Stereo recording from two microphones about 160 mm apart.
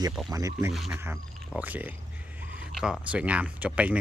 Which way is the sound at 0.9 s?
15° right (ahead or behind).